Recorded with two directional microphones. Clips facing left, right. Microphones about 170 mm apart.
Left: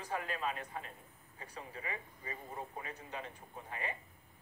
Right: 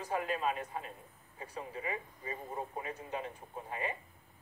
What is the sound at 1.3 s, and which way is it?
Speech, 20° right (ahead or behind).